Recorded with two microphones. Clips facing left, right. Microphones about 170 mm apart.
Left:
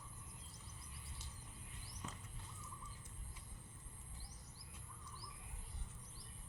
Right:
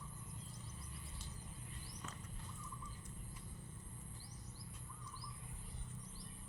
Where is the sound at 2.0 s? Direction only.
20° left (ahead or behind).